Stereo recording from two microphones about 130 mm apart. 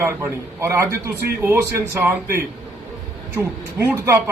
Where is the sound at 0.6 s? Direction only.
20° right (ahead or behind).